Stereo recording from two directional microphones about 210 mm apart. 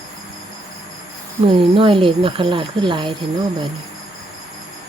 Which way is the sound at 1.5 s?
25° right (ahead or behind).